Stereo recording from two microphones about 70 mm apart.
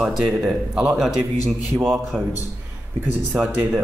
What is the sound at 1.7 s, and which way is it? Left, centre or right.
Speech, right.